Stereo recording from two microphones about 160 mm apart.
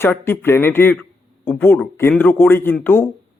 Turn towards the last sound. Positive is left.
turn(degrees=15)  # may be behind; listen again after turning